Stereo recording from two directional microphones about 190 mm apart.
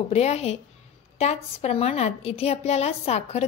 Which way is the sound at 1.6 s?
35° left (ahead or behind).